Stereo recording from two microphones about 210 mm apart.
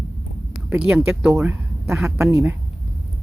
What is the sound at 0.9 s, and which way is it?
A woman's voice, 10° right (ahead or behind).